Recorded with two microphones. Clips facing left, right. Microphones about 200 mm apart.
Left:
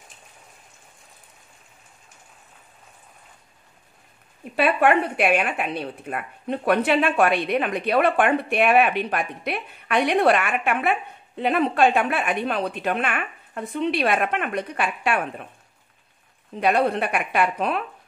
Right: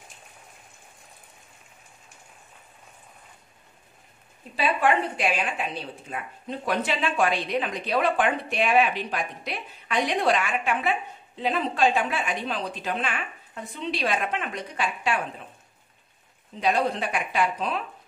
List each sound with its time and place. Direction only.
4.6 s a woman's voice: 60° left (ahead or behind)
16.5 s a woman's voice: 60° left (ahead or behind)